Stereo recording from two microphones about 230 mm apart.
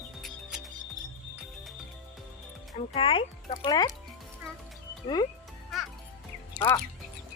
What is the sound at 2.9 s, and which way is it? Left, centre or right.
Speech, left.